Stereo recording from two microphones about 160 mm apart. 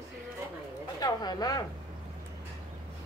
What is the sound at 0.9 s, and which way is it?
Speech, 25° left (ahead or behind).